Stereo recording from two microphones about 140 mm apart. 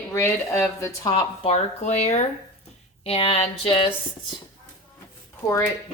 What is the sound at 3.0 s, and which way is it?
Speech, 45° left (ahead or behind).